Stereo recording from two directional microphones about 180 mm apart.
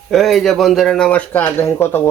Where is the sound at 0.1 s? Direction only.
Centre (ahead or behind).